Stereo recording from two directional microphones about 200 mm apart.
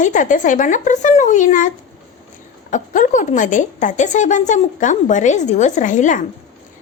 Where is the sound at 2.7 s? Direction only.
40° left (ahead or behind).